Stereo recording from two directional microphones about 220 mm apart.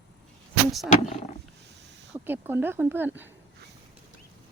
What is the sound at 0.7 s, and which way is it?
Speech, centre (ahead or behind).